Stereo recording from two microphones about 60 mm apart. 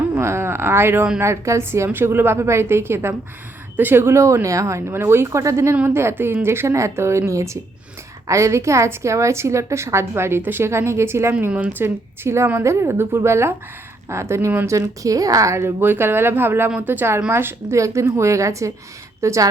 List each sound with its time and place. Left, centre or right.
0.1 s a woman's voice: right
1.9 s a woman's voice: right
5.8 s a woman's voice: right
11.3 s speech: right
11.8 s a woman's voice: right
14.7 s a woman's voice: right
15.8 s speech: right
17.3 s speech: right